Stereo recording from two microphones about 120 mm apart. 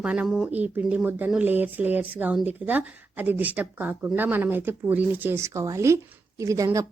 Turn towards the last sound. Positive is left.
turn(degrees=-25)  # may be behind; listen again after turning